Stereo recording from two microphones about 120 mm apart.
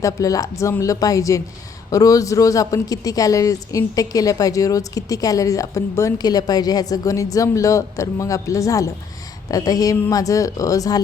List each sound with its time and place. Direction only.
0.0 s a man's voice: 30° left (ahead or behind)